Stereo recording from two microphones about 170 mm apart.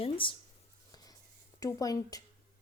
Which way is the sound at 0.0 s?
30° left (ahead or behind).